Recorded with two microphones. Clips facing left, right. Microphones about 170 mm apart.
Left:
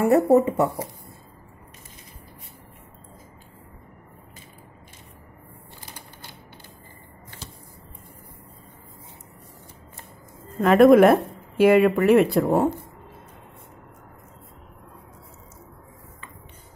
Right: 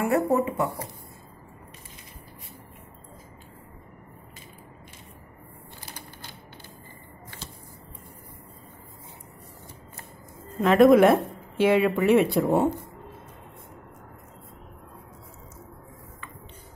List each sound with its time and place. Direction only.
0.0 s speech: 35° left (ahead or behind)
10.6 s speech: 5° left (ahead or behind)